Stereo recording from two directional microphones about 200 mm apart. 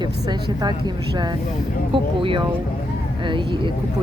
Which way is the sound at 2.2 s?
25° right (ahead or behind).